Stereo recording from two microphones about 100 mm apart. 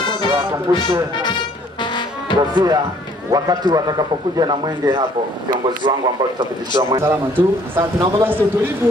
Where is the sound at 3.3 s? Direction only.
40° right (ahead or behind).